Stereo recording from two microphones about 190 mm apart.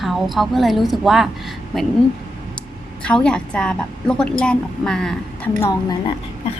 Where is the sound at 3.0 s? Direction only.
5° left (ahead or behind).